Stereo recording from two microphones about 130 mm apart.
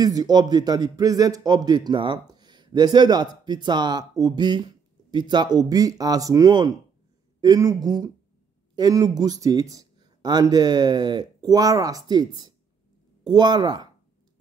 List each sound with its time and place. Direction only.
0.0 s speech: 30° right (ahead or behind)